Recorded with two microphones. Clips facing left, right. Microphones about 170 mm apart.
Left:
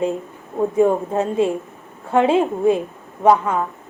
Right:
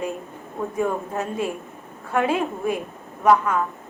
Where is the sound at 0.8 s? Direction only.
20° left (ahead or behind).